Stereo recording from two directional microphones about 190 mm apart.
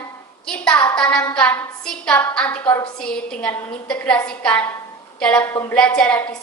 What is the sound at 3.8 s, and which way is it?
A woman's voice, 5° left (ahead or behind).